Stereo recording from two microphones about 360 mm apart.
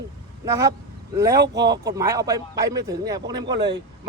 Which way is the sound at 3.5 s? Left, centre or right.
Right.